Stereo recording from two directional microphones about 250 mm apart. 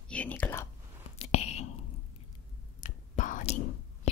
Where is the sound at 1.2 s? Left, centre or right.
Left.